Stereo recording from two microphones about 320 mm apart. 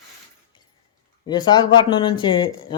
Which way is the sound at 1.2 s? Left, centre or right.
Centre.